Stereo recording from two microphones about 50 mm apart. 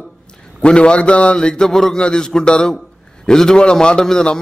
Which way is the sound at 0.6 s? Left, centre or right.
Left.